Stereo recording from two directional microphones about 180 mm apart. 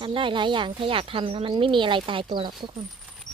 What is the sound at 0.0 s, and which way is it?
Speech, 25° right (ahead or behind).